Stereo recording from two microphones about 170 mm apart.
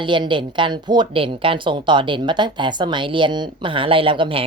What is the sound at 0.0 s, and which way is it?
Speech, 30° right (ahead or behind).